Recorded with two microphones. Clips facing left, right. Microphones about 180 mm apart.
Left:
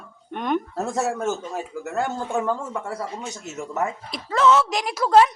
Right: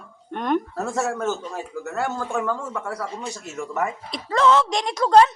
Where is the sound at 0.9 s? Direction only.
15° left (ahead or behind).